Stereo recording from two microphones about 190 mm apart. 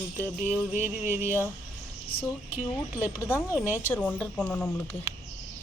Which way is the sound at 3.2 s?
15° left (ahead or behind).